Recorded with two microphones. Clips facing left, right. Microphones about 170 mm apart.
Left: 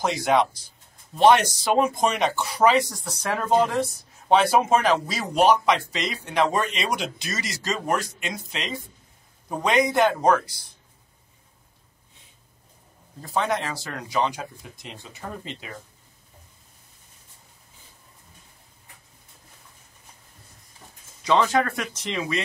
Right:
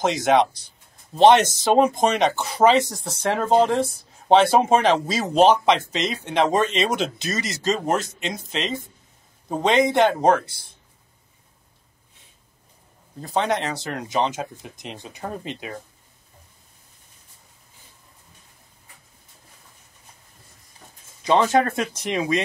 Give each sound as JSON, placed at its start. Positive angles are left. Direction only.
{"t": 0.0, "sound": "speech", "side_deg": -20}
{"t": 13.2, "sound": "speech", "side_deg": -20}
{"t": 21.3, "sound": "speech", "side_deg": -25}